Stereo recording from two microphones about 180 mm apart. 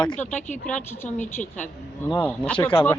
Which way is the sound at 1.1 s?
45° left (ahead or behind).